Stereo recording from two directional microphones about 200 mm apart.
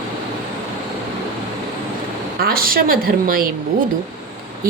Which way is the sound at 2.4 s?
45° right (ahead or behind).